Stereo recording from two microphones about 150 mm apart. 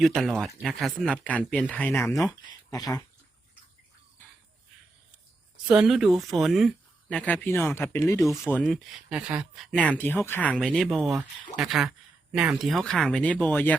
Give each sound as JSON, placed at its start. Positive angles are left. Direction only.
{"t": 0.0, "sound": "speech", "side_deg": 0}
{"t": 5.6, "sound": "speech", "side_deg": -5}
{"t": 8.7, "sound": "speech", "side_deg": 0}
{"t": 9.7, "sound": "speech", "side_deg": 10}